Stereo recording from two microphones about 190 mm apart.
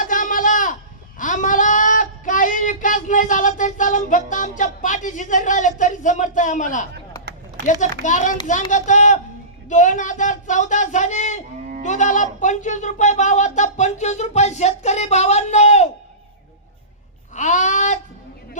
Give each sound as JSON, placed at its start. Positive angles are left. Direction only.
{"t": 0.0, "sound": "a sound", "side_deg": 45}
{"t": 1.2, "sound": "speech", "side_deg": 40}
{"t": 8.0, "sound": "speech", "side_deg": 40}
{"t": 17.3, "sound": "speech", "side_deg": 40}